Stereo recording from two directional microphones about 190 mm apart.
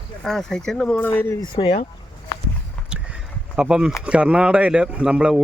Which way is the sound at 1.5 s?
25° left (ahead or behind).